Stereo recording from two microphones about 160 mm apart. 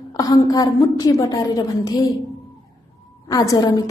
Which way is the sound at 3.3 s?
20° left (ahead or behind).